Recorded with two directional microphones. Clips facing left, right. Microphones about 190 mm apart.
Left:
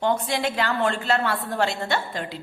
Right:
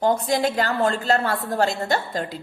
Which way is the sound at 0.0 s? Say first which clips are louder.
Right 3 dB; 40° right (ahead or behind).